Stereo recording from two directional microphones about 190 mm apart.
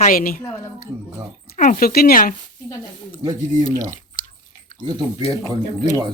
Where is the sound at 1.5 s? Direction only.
45° left (ahead or behind).